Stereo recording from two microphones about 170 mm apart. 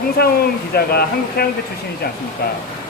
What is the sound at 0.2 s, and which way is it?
Speech, 70° left (ahead or behind).